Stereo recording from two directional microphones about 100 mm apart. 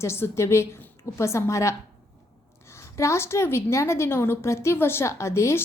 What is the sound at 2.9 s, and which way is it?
A woman's voice, 30° left (ahead or behind).